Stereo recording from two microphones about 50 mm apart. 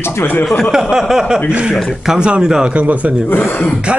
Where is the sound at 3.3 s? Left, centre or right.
Left.